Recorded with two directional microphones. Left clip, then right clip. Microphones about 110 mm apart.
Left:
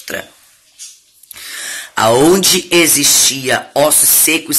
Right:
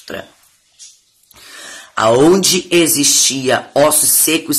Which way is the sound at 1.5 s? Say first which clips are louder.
Left 8 dB; 45° right (ahead or behind).